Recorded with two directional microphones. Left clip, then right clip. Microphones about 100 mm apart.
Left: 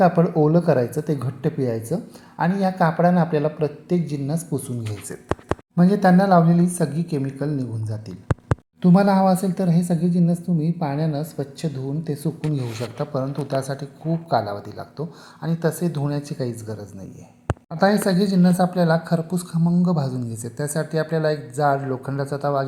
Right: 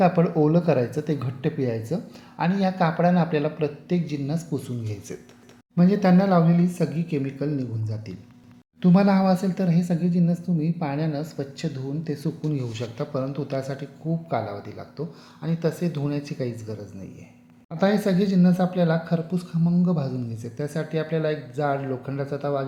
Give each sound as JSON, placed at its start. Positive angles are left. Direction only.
{"t": 0.0, "sound": "a woman's voice", "side_deg": 0}
{"t": 5.7, "sound": "a woman's voice", "side_deg": 10}
{"t": 8.8, "sound": "a woman's voice", "side_deg": 15}